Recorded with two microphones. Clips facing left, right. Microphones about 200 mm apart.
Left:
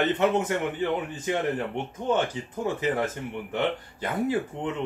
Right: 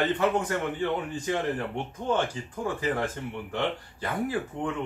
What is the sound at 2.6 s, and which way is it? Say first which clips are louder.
Speech: left 2 dB; 20° left (ahead or behind).